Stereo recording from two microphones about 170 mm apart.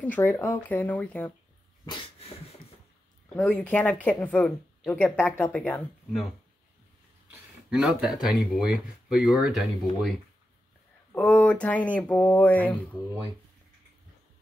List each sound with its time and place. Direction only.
0.0 s a woman's voice: 10° left (ahead or behind)
1.9 s dog: 35° left (ahead or behind)
3.3 s a woman's voice: 10° left (ahead or behind)
7.7 s speech: centre (ahead or behind)
11.1 s a woman's voice: 10° left (ahead or behind)